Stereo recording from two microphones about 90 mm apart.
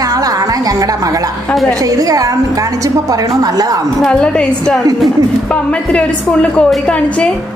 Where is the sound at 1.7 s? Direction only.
40° right (ahead or behind).